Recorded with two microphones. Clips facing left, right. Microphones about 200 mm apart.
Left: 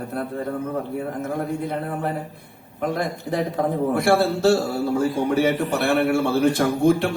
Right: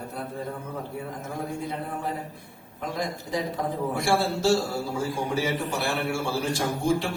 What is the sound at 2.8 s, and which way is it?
A man's voice, 60° left (ahead or behind).